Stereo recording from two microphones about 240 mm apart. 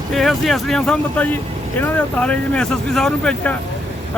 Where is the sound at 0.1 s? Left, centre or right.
Centre.